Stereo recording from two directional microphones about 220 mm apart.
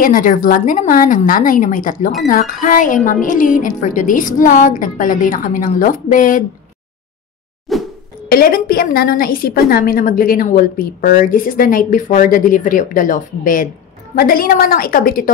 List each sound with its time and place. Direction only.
0.0 s a woman's voice: 40° left (ahead or behind)
7.7 s a sound: centre (ahead or behind)
8.3 s a woman's voice: 40° left (ahead or behind)